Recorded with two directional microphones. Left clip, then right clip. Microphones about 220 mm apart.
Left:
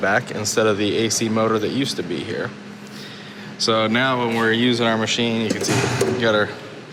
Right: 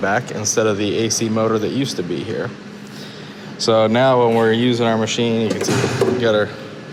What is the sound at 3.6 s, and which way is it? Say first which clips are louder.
Speech: right 4 dB; 20° right (ahead or behind).